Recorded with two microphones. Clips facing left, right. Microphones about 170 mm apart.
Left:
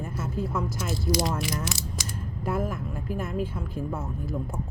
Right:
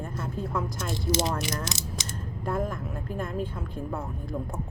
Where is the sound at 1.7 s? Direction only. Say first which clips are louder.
Left 1 dB; 20° right (ahead or behind).